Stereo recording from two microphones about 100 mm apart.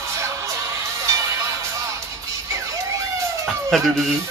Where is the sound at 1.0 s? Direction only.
35° right (ahead or behind).